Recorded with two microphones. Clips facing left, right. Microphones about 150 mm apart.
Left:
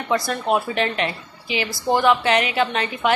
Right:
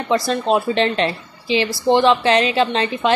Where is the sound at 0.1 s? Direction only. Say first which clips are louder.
Right 3 dB; 25° right (ahead or behind).